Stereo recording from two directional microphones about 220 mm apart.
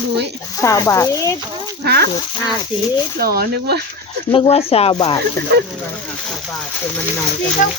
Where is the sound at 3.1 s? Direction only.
45° right (ahead or behind).